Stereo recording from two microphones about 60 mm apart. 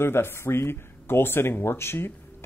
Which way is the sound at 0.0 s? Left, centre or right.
Left.